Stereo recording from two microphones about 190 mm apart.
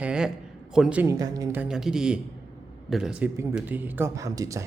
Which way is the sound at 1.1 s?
20° right (ahead or behind).